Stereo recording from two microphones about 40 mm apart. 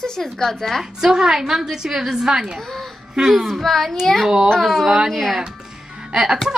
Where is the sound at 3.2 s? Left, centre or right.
Centre.